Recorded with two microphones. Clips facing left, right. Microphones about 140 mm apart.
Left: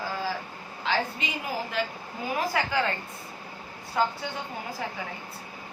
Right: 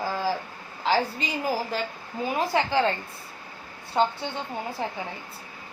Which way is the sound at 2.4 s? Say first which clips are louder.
Right 3 dB; 30° right (ahead or behind).